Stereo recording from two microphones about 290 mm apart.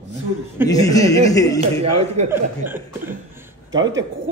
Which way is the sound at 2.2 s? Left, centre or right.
Centre.